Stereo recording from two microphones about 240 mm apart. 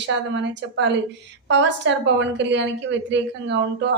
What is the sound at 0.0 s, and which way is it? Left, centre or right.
A woman's voice, right.